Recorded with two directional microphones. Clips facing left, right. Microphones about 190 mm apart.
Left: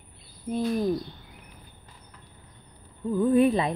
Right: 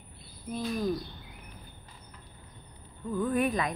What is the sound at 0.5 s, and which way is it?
Speech, 25° left (ahead or behind).